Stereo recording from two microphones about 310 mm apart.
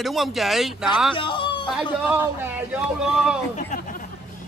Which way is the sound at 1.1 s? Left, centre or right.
Centre.